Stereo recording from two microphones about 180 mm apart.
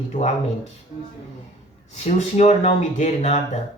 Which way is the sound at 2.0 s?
35° left (ahead or behind).